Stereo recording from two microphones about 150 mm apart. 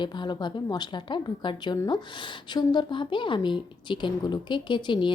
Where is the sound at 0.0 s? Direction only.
30° left (ahead or behind).